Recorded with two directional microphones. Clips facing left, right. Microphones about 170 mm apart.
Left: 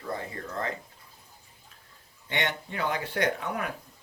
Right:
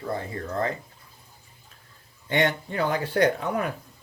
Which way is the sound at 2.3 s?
40° right (ahead or behind).